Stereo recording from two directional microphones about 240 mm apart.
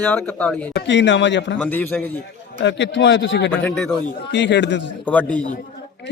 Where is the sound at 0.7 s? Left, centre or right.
Left.